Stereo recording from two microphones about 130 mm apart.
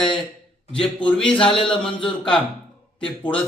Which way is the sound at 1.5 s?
45° left (ahead or behind).